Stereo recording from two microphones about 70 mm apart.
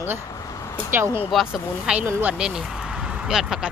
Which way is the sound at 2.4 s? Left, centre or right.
Centre.